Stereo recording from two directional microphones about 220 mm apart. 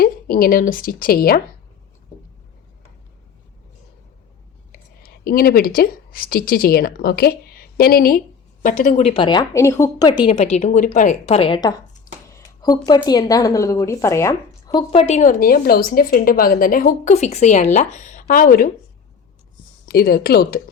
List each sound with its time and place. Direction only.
0.0 s speech: 40° left (ahead or behind)
5.2 s speech: 40° left (ahead or behind); by 10.2 s 15° left (ahead or behind)
10.2 s speech: 30° left (ahead or behind); by 14.8 s 15° left (ahead or behind)
14.8 s a woman's voice: 30° left (ahead or behind)
19.8 s speech: 45° left (ahead or behind)